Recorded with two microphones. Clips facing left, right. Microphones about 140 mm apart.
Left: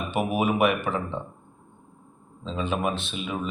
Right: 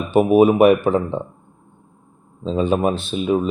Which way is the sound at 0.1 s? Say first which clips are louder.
Right 12 dB; 40° right (ahead or behind).